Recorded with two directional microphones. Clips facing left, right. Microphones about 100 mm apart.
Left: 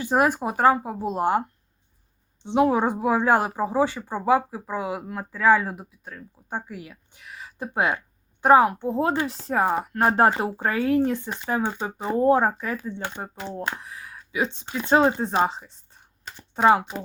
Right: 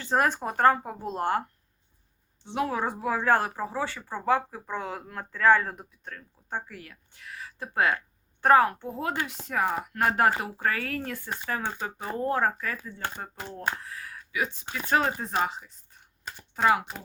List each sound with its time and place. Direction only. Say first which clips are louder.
0.0 s speech: left 4 dB; 10° left (ahead or behind)
8.9 s speech: left 7 dB; 25° left (ahead or behind)